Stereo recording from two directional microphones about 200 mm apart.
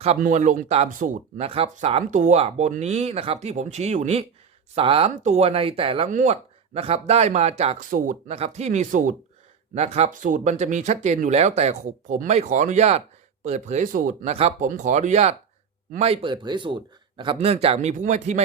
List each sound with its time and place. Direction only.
0.2 s speech: 40° right (ahead or behind)